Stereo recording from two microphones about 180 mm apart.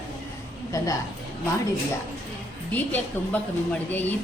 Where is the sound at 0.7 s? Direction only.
20° left (ahead or behind).